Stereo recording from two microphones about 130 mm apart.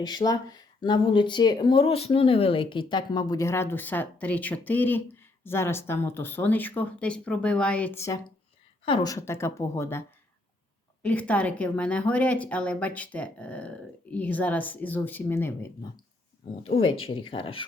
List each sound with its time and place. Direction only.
0.0 s speech: 35° left (ahead or behind); by 7.9 s 10° left (ahead or behind)
9.0 s speech: 20° left (ahead or behind)
11.0 s speech: 10° left (ahead or behind)
16.6 s speech: 50° left (ahead or behind)